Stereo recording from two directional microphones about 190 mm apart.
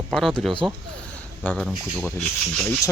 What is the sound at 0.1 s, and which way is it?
Speech, centre (ahead or behind).